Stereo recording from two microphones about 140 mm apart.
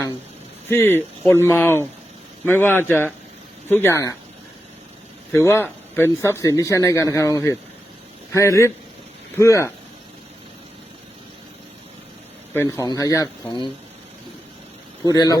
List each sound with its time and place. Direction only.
0.7 s speech: 15° left (ahead or behind)
5.3 s speech: 15° left (ahead or behind)
12.6 s speech: 25° left (ahead or behind)
15.0 s speech: 25° left (ahead or behind)